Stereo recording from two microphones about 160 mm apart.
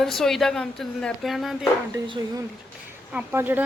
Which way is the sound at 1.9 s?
25° right (ahead or behind).